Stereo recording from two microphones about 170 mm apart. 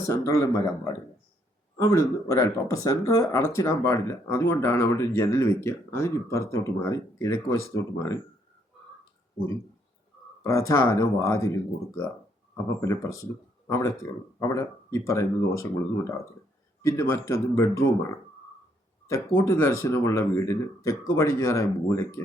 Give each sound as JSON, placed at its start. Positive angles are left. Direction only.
{"t": 0.1, "sound": "speech", "side_deg": 20}
{"t": 1.8, "sound": "speech", "side_deg": 15}
{"t": 10.4, "sound": "speech", "side_deg": 20}
{"t": 16.8, "sound": "speech", "side_deg": 15}